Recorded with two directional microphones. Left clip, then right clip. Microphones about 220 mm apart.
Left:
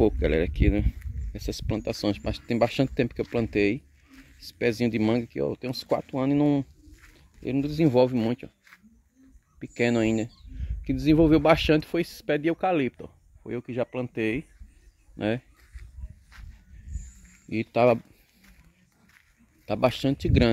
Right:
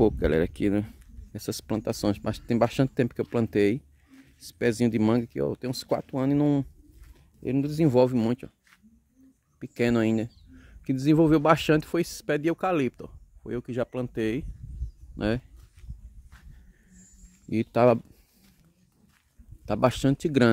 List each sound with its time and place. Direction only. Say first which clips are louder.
0.0 s speech: even; 15° right (ahead or behind)
9.6 s speech: left 1 dB; 10° right (ahead or behind)
17.5 s speech: even; 20° right (ahead or behind)
19.6 s speech: even; 20° right (ahead or behind)